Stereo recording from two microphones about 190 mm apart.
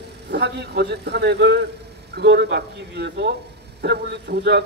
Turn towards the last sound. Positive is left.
turn(degrees=-60)  # may be behind; listen again after turning